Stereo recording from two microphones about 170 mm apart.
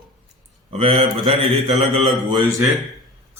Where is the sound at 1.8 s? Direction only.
30° right (ahead or behind).